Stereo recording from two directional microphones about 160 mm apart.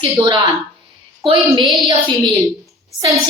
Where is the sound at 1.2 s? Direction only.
30° right (ahead or behind).